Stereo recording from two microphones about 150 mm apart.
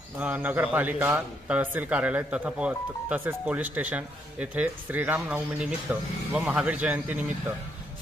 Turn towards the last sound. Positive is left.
turn(degrees=-10)  # may be behind; listen again after turning